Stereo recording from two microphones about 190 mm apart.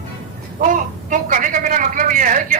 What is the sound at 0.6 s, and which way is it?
Speech, 45° right (ahead or behind).